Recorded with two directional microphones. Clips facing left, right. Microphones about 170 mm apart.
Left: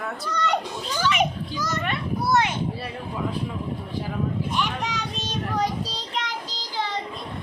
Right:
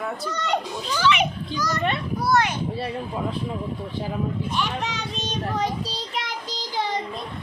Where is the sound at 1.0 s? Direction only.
45° left (ahead or behind).